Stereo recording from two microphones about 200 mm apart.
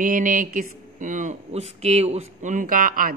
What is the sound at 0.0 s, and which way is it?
Speech, 40° right (ahead or behind).